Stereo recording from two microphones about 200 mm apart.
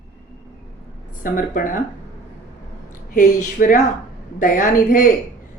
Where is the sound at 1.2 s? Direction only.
45° left (ahead or behind).